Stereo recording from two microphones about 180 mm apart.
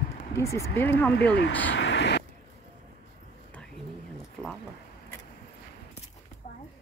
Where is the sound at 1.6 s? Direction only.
80° left.